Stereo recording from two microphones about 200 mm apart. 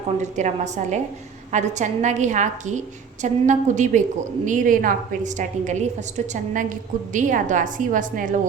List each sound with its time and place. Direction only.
0.2 s a woman's voice: 35° right (ahead or behind)